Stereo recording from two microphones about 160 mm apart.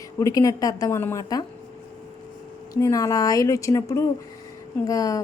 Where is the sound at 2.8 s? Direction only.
20° left (ahead or behind).